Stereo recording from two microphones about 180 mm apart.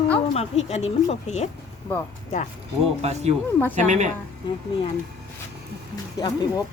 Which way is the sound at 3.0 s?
35° right (ahead or behind).